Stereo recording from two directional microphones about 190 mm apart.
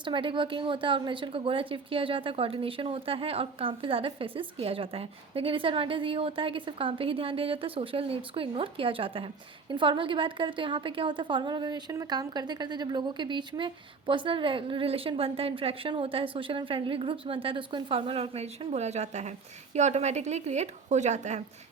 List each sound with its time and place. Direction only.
0.0 s a woman's voice: 25° right (ahead or behind)